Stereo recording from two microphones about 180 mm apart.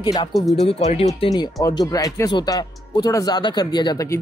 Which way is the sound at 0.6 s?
35° left (ahead or behind).